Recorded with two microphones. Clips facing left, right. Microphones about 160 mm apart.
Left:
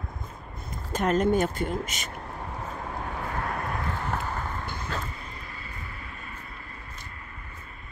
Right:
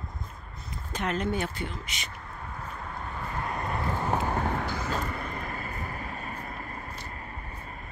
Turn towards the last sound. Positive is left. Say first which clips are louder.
# right 4 dB
turn(degrees=-40)  # may be behind; listen again after turning